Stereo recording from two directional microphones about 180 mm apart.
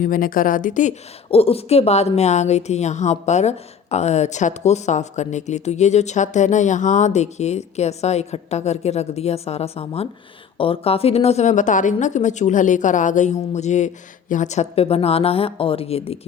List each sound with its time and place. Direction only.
0.0 s a woman's voice: 50° left (ahead or behind); by 16.1 s 35° left (ahead or behind)